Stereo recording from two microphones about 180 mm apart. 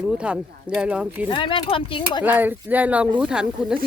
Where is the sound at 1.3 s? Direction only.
30° left (ahead or behind).